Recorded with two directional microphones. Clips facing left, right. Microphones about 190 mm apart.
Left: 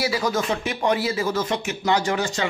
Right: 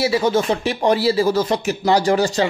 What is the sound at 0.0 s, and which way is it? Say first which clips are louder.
Speech: right 6 dB; 25° right (ahead or behind).